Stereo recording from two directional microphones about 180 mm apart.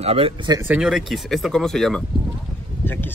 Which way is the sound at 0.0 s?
30° right (ahead or behind).